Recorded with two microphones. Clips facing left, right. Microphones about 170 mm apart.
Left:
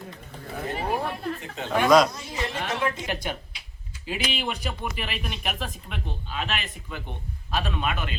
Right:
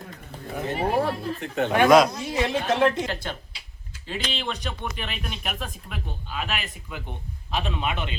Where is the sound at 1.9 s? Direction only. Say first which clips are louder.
Right 1 dB; 5° right (ahead or behind).